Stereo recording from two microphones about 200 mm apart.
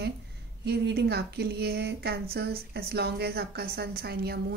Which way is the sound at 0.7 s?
55° right (ahead or behind).